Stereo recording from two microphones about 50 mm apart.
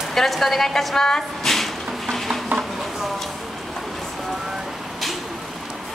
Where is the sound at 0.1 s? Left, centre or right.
Centre.